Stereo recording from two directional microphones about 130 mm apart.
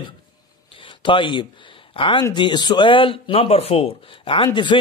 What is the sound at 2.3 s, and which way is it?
A man's voice, 35° left (ahead or behind).